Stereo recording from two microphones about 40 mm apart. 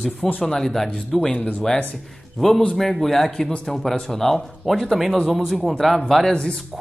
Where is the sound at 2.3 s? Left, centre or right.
Centre.